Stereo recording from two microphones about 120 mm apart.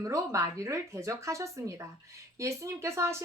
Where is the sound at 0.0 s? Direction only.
25° right (ahead or behind).